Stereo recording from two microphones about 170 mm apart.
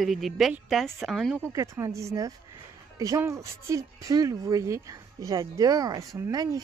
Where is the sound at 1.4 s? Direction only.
15° right (ahead or behind).